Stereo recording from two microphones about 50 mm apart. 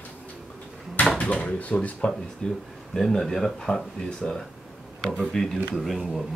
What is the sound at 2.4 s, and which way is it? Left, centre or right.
Speech, centre.